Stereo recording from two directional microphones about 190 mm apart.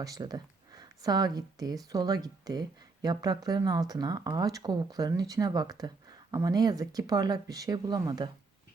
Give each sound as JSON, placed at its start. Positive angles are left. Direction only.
{"t": 0.0, "sound": "speech", "side_deg": -20}